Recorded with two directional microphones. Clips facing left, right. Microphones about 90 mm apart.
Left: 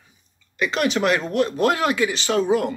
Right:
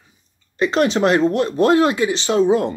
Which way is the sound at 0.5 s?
35° right (ahead or behind).